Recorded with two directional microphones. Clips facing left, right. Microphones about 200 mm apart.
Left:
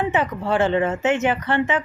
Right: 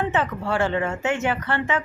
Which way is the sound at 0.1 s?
15° left (ahead or behind).